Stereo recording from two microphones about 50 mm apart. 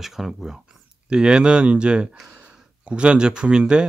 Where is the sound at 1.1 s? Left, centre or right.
Centre.